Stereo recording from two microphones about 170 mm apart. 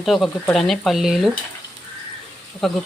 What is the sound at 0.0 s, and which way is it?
Speech, centre (ahead or behind).